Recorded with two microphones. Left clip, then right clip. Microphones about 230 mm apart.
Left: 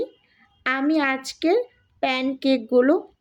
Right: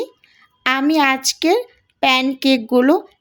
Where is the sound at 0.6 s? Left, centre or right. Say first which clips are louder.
Right 6 dB; right.